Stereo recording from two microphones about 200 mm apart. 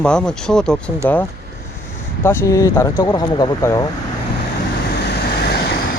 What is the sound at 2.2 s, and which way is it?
Speech, 15° left (ahead or behind).